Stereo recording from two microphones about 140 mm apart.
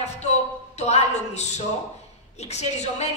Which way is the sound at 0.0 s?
55° left (ahead or behind).